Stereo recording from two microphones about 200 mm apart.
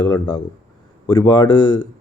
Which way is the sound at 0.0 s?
20° left (ahead or behind).